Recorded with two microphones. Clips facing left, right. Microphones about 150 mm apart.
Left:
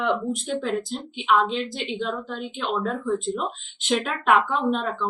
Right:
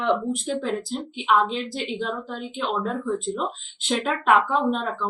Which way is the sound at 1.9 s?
5° right (ahead or behind).